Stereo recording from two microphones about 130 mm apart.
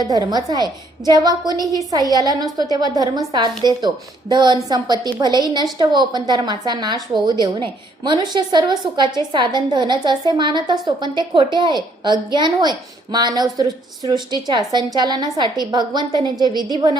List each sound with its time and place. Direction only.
0.0 s a woman's voice: 30° right (ahead or behind)
1.5 s a woman's voice: 25° left (ahead or behind)
1.9 s a woman's voice: 30° right (ahead or behind)